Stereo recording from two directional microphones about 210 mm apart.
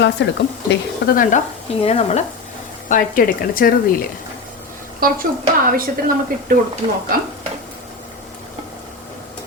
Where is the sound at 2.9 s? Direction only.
40° left (ahead or behind).